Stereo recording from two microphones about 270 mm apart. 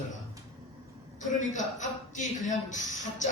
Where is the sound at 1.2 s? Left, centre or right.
Left.